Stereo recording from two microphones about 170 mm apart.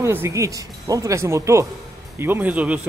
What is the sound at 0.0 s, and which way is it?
Speech, 15° right (ahead or behind).